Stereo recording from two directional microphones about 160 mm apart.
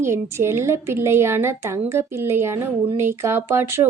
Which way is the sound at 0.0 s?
15° right (ahead or behind).